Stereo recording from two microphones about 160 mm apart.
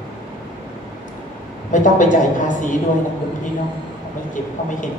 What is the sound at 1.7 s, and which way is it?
Speech, 55° left (ahead or behind).